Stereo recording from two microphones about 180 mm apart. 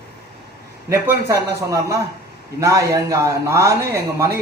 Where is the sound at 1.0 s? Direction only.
15° right (ahead or behind).